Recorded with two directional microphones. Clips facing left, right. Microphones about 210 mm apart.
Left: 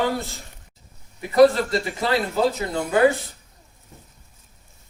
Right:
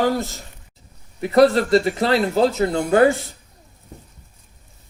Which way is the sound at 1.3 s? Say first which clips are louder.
Right 2 dB; 55° right (ahead or behind).